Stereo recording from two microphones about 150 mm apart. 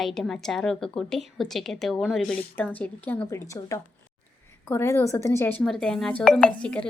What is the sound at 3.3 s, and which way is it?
A woman's voice, 20° left (ahead or behind).